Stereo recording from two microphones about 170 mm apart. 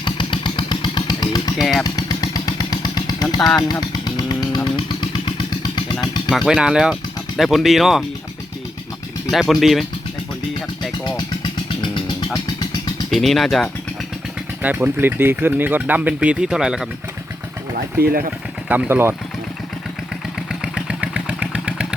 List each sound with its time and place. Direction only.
0.0 s vehicle: 30° left (ahead or behind)
3.6 s motorcycle: 25° left (ahead or behind)
5.7 s vehicle: 25° left (ahead or behind)
6.3 s speech: 5° right (ahead or behind)
9.3 s speech: centre (ahead or behind)
12.3 s music: 25° left (ahead or behind)
13.1 s speech: centre (ahead or behind)
14.6 s speech: 10° right (ahead or behind)
18.0 s speech: 60° right (ahead or behind)
18.7 s speech: 10° right (ahead or behind)
20.5 s vehicle: 5° right (ahead or behind)